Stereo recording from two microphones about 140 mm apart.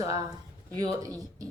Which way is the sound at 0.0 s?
25° right (ahead or behind).